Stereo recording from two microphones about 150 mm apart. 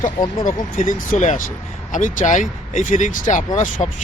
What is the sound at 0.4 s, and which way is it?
Speech, 60° left (ahead or behind).